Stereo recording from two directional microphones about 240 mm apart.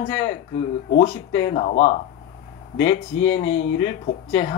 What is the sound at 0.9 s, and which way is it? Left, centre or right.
Speech, left.